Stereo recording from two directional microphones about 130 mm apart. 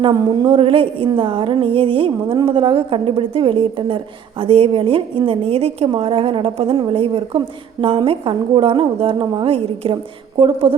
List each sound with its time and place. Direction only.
0.0 s speech: 40° right (ahead or behind)